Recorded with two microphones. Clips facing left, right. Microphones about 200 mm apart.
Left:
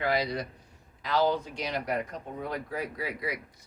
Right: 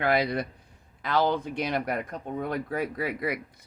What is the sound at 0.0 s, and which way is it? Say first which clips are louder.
Speech: right 4 dB; 55° right (ahead or behind).